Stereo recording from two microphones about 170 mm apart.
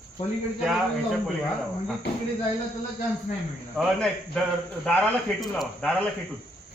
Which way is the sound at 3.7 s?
5° left (ahead or behind).